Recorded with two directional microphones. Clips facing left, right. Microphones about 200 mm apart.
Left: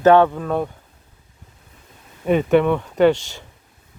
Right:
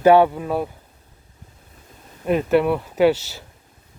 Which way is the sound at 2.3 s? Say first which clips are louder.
Left 2 dB; centre (ahead or behind).